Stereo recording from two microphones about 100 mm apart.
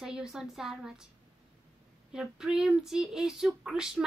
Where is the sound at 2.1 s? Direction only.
5° right (ahead or behind).